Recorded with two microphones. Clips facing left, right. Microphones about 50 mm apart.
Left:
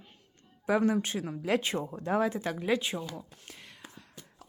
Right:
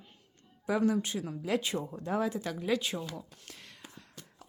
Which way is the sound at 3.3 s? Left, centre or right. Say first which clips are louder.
Left 1 dB; centre.